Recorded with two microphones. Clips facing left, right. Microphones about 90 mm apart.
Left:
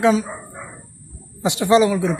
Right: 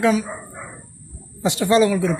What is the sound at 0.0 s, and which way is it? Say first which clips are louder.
Speech: left 2 dB; 20° left (ahead or behind).